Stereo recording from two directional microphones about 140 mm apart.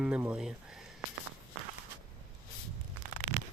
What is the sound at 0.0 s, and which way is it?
Speech, 10° right (ahead or behind).